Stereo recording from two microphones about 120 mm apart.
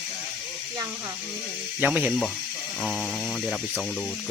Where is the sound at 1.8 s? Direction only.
10° right (ahead or behind).